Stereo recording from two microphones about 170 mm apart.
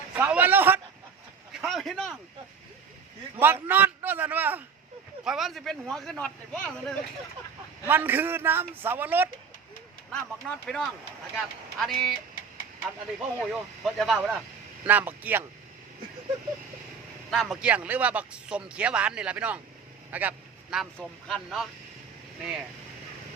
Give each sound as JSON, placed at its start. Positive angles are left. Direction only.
{"t": 0.1, "sound": "a man's voice", "side_deg": -10}
{"t": 1.6, "sound": "speech", "side_deg": 0}
{"t": 3.4, "sound": "speech", "side_deg": -10}
{"t": 7.9, "sound": "speech", "side_deg": -10}
{"t": 10.2, "sound": "speech", "side_deg": 5}
{"t": 17.3, "sound": "speech", "side_deg": 0}